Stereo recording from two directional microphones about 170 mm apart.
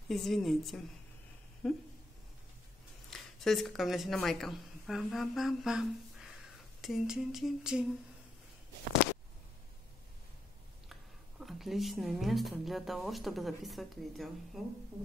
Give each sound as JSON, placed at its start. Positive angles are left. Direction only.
{"t": 0.1, "sound": "humming", "side_deg": 0}
{"t": 3.1, "sound": "a woman's voice", "side_deg": 0}
{"t": 6.8, "sound": "humming", "side_deg": 0}
{"t": 10.9, "sound": "speech", "side_deg": 0}